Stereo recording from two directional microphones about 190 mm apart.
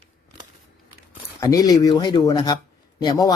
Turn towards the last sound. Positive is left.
turn(degrees=20)  # may be behind; listen again after turning